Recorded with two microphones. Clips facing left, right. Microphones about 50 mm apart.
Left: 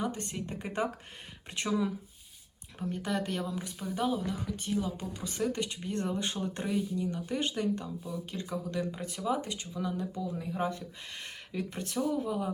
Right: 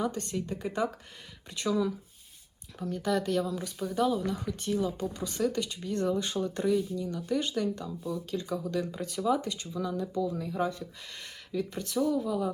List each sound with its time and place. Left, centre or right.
0.0 s speech: left
11.5 s speech: left
11.9 s speech: centre